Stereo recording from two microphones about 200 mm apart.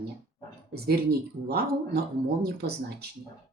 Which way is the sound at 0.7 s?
55° right (ahead or behind).